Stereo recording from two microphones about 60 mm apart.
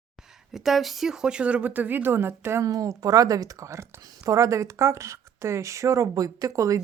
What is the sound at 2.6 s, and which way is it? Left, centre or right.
A woman's voice, right.